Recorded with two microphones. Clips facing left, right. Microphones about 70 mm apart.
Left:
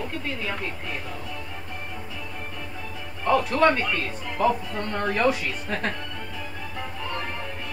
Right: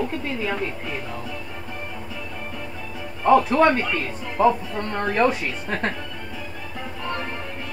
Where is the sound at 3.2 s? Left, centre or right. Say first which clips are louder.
Right 6 dB; right.